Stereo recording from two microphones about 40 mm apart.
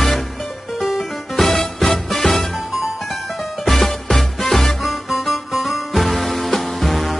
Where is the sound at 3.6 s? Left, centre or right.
Centre.